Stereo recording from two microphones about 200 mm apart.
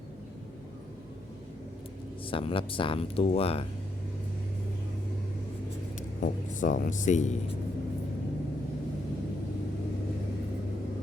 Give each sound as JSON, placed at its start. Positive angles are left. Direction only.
{"t": 2.2, "sound": "speech", "side_deg": 25}
{"t": 6.0, "sound": "speech", "side_deg": 40}